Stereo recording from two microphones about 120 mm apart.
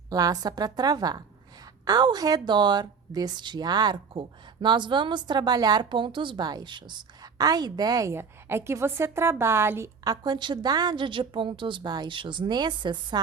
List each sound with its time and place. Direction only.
0.1 s a woman's voice: 30° right (ahead or behind)